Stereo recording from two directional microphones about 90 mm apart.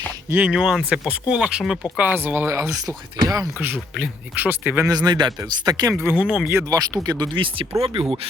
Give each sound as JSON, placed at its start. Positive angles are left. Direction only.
{"t": 0.3, "sound": "speech", "side_deg": -20}
{"t": 0.5, "sound": "speech", "side_deg": -5}
{"t": 2.0, "sound": "speech", "side_deg": -20}
{"t": 2.8, "sound": "speech", "side_deg": -40}
{"t": 3.9, "sound": "speech", "side_deg": -15}
{"t": 4.9, "sound": "speech", "side_deg": -50}
{"t": 6.0, "sound": "speech", "side_deg": -25}
{"t": 6.2, "sound": "speech", "side_deg": -10}
{"t": 6.7, "sound": "speech", "side_deg": -45}
{"t": 7.3, "sound": "speech", "side_deg": -75}